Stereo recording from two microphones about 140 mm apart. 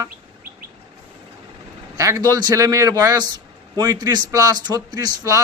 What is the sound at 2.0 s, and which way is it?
A man's voice, 25° right (ahead or behind).